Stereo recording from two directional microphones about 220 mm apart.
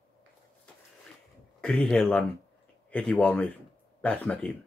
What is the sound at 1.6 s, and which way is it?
Speech, 5° left (ahead or behind).